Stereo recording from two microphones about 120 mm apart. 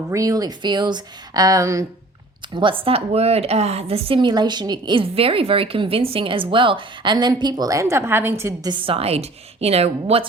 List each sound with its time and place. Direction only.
0.1 s speech: 30° right (ahead or behind)
2.6 s a woman's voice: 45° right (ahead or behind); by 8.7 s 20° right (ahead or behind)
8.7 s a woman's voice: 50° right (ahead or behind)